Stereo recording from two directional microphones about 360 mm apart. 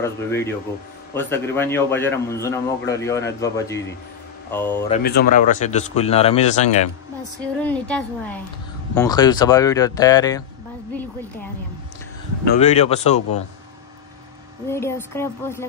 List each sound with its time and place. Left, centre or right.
0.0 s a man's voice: centre
4.9 s speech: left
7.6 s a woman's voice: centre
12.4 s a man's voice: centre
14.7 s a man's voice: centre